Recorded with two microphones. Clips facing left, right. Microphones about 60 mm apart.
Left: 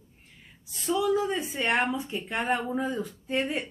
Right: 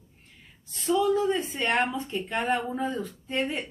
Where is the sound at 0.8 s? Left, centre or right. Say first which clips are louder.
Right 2 dB; centre.